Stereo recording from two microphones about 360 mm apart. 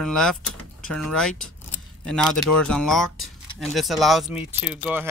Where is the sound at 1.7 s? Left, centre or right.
Centre.